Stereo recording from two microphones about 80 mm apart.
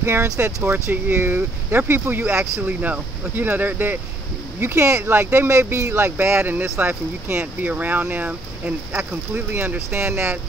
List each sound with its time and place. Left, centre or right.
0.0 s speech: right